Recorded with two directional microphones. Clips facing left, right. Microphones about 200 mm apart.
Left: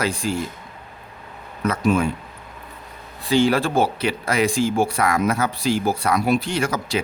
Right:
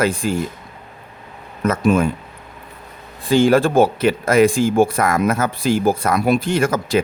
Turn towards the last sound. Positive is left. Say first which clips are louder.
# right 5 dB
turn(degrees=-50)  # may be behind; listen again after turning